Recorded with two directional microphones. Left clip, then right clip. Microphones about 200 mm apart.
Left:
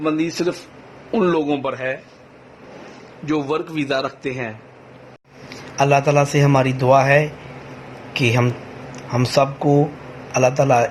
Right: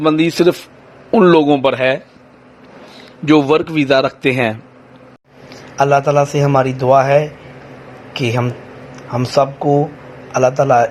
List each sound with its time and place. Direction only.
0.0 s a man's voice: 35° right (ahead or behind)
3.2 s a man's voice: 35° right (ahead or behind)
5.5 s a man's voice: 10° right (ahead or behind)